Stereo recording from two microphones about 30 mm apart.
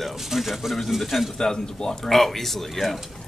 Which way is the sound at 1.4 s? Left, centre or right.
Left.